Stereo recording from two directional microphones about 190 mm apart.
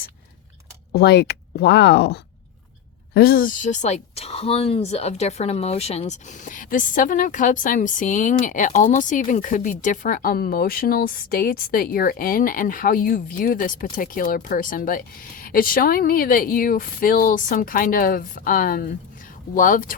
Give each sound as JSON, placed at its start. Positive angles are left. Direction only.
{"t": 0.9, "sound": "speech", "side_deg": 60}